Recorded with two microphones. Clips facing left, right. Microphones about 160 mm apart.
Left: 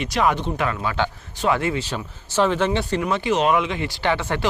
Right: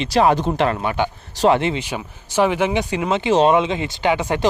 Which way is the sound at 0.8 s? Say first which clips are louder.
Right 3 dB; 20° right (ahead or behind).